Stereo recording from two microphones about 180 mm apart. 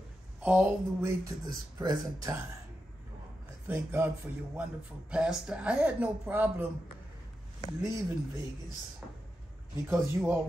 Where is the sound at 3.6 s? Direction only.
10° right (ahead or behind).